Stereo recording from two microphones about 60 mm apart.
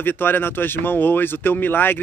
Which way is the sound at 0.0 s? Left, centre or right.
Left.